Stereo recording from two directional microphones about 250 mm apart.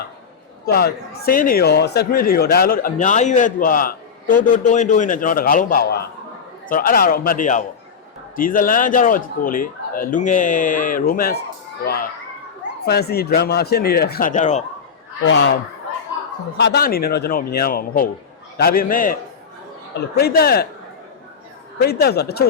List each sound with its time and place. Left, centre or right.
0.6 s speech: left
12.8 s speech: left
15.2 s speech: left
16.6 s speech: left
21.8 s speech: left